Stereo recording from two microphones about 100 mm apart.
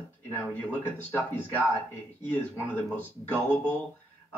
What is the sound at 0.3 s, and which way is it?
Speech, 15° left (ahead or behind).